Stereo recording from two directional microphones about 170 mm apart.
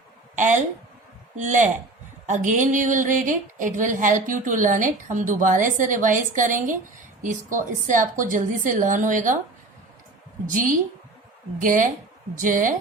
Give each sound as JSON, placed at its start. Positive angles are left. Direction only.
{"t": 0.3, "sound": "a woman's voice", "side_deg": -50}
{"t": 10.4, "sound": "speech", "side_deg": -55}